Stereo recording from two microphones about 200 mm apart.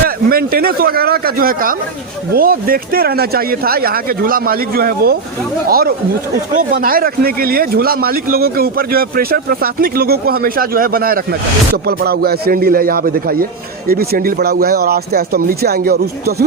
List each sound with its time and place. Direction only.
0.3 s speech: 50° right (ahead or behind)